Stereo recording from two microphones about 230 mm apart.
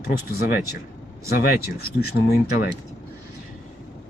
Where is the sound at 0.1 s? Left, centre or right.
Left.